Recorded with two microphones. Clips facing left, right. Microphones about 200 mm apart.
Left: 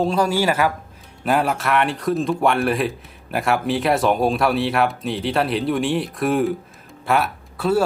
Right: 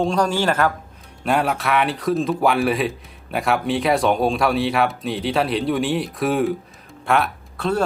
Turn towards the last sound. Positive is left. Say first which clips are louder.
# left 3 dB
turn(degrees=5)  # may be behind; listen again after turning